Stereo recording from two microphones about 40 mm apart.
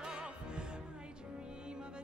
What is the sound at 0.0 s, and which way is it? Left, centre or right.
Music, right.